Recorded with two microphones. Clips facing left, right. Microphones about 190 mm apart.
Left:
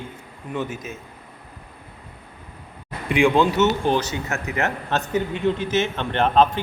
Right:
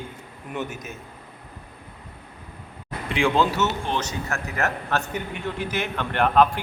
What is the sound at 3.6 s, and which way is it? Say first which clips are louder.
Speech: left 6 dB; 35° left (ahead or behind).